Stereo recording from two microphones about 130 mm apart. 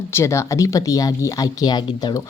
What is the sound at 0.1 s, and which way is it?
Speech, 20° left (ahead or behind).